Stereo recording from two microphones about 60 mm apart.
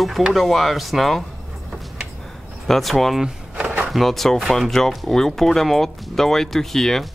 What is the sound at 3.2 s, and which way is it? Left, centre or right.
Vehicle, centre.